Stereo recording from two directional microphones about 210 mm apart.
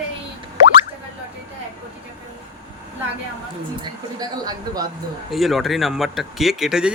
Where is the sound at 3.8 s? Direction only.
20° right (ahead or behind).